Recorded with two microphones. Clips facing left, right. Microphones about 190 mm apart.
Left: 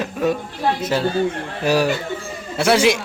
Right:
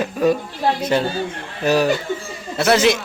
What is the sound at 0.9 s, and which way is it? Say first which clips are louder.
A man's voice: left 1 dB; 5° left (ahead or behind).